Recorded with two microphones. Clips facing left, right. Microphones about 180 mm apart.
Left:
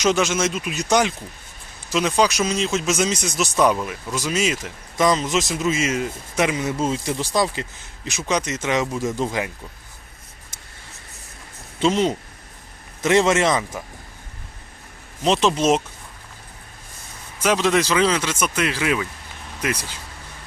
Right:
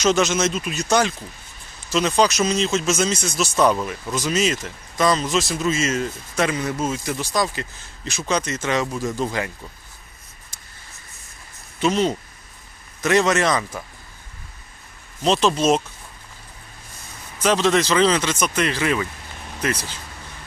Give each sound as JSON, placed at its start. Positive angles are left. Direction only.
{"t": 0.0, "sound": "speech", "side_deg": 10}
{"t": 11.8, "sound": "speech", "side_deg": 20}
{"t": 15.2, "sound": "speech", "side_deg": 15}
{"t": 17.4, "sound": "speech", "side_deg": 10}